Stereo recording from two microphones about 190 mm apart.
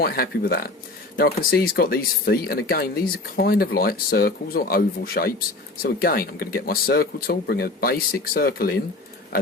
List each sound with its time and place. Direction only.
0.0 s speech: 55° left (ahead or behind)